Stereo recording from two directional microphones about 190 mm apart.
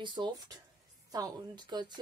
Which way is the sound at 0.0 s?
25° right (ahead or behind).